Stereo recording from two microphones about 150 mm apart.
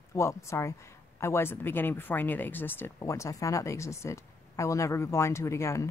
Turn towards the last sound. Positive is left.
turn(degrees=20)  # may be behind; listen again after turning